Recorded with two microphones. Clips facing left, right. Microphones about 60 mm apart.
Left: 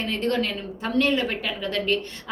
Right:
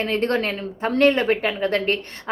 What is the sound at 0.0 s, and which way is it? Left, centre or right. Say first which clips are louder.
A woman's voice: right 3 dB; right.